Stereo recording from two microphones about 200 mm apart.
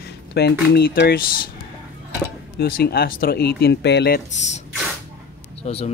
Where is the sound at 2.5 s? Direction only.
50° left (ahead or behind).